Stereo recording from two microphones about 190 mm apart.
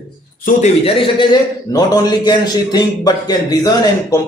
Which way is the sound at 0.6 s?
30° left (ahead or behind).